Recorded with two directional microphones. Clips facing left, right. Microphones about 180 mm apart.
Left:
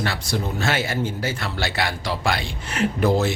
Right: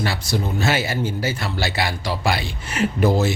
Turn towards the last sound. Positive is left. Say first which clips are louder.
# right 1 dB
turn(degrees=0)  # may be behind; listen again after turning